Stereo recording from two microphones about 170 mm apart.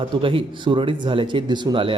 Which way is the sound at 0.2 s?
30° right (ahead or behind).